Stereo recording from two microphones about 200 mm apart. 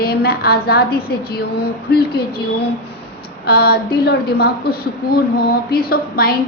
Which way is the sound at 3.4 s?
50° left (ahead or behind).